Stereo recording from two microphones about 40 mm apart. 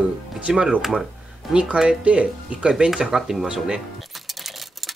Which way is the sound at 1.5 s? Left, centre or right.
Right.